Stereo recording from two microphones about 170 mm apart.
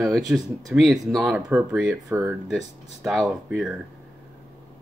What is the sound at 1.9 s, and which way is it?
Speech, 15° right (ahead or behind).